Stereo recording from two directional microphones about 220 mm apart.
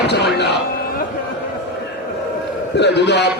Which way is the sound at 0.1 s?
50° left (ahead or behind).